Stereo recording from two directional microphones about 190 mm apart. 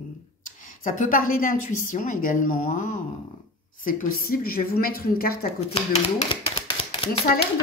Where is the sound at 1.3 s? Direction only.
45° left (ahead or behind).